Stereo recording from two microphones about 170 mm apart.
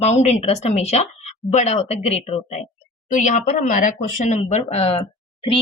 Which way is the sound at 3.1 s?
50° left (ahead or behind).